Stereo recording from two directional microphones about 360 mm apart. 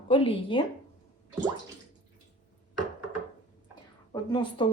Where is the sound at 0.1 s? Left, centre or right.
Centre.